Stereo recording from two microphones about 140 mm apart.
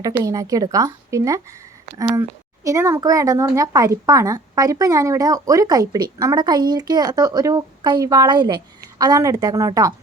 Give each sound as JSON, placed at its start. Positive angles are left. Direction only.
{"t": 0.2, "sound": "a woman's voice", "side_deg": -25}